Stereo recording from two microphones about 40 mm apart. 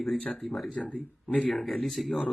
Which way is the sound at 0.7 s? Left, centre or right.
Left.